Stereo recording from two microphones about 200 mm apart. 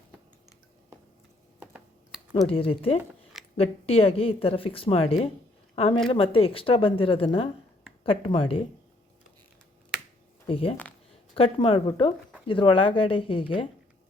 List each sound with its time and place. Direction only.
1.5 s computer keyboard: 5° right (ahead or behind)
2.5 s a woman's voice: 30° left (ahead or behind)
10.4 s speech: 30° left (ahead or behind)